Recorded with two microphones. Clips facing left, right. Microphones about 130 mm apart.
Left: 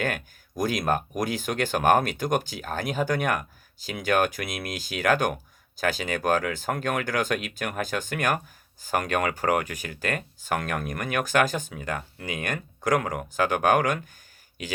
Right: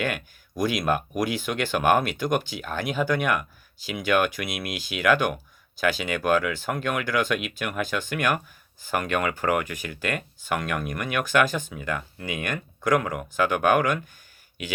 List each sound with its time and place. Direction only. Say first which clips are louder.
0.0 s speech: right 1 dB; 40° left (ahead or behind)